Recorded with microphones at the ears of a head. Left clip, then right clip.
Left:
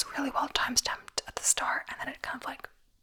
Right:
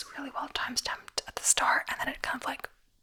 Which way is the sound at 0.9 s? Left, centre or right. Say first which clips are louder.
Left 1 dB; centre.